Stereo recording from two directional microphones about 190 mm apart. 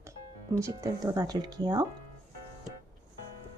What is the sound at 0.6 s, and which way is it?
Speech, 15° right (ahead or behind).